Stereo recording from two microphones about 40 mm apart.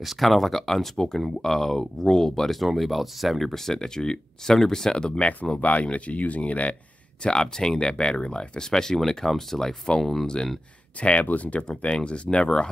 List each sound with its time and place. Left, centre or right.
0.0 s speech: centre
0.9 s speech: centre
5.6 s speech: left
7.2 s speech: centre
11.0 s speech: left
11.6 s speech: left